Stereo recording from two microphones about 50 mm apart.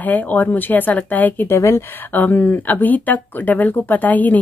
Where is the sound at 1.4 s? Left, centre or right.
Left.